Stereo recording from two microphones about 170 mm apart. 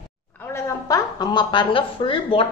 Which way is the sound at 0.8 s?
25° left (ahead or behind).